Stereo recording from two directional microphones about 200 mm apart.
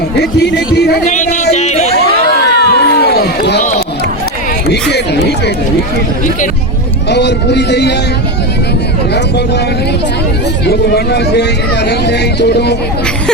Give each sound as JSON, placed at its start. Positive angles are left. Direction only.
{"t": 0.2, "sound": "music", "side_deg": 55}
{"t": 1.0, "sound": "a sound", "side_deg": 35}
{"t": 2.6, "sound": "a sound", "side_deg": 55}
{"t": 3.6, "sound": "run", "side_deg": 35}
{"t": 4.7, "sound": "speech", "side_deg": 55}
{"t": 7.1, "sound": "speech", "side_deg": 60}
{"t": 10.7, "sound": "speech", "side_deg": 55}